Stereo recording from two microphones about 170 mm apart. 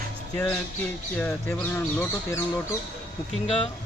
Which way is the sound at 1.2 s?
10° left (ahead or behind).